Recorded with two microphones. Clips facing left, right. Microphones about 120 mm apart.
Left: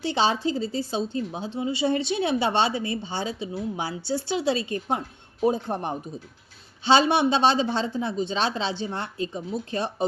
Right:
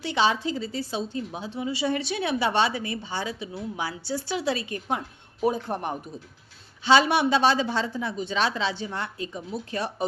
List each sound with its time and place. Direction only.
0.0 s a woman's voice: 30° left (ahead or behind)